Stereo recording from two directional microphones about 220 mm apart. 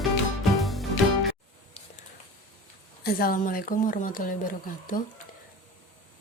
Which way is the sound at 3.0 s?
45° left (ahead or behind).